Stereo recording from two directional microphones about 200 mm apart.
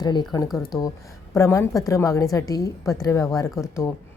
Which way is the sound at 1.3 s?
15° left (ahead or behind).